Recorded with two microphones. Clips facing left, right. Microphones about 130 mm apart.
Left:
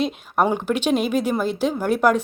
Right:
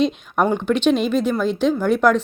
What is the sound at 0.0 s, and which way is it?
Speech, 5° left (ahead or behind).